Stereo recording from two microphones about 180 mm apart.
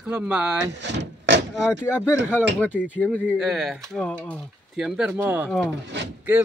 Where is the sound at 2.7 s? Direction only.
5° right (ahead or behind).